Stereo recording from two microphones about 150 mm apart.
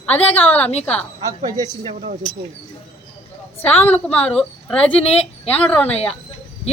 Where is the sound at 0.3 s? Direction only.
10° left (ahead or behind).